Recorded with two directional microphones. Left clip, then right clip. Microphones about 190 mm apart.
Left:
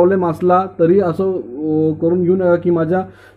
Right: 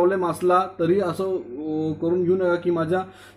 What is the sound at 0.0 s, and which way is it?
Speech, 40° left (ahead or behind).